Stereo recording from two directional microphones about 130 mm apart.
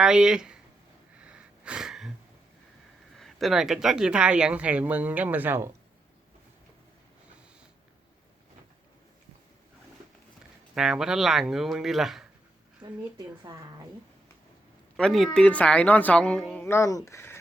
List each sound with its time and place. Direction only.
0.0 s speech: 5° right (ahead or behind)
1.2 s a sound: 10° right (ahead or behind)
3.2 s speech: centre (ahead or behind); by 5.7 s 20° right (ahead or behind)
10.8 s speech: 5° right (ahead or behind)
12.8 s speech: 30° right (ahead or behind)
14.9 s a woman's voice: 5° left (ahead or behind)
16.6 s speech: 20° left (ahead or behind)